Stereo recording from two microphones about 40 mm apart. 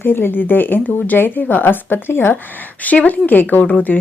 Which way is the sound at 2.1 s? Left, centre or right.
Left.